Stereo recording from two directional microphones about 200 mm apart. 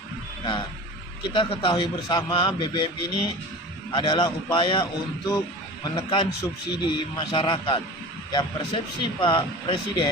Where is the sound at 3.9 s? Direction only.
25° left (ahead or behind).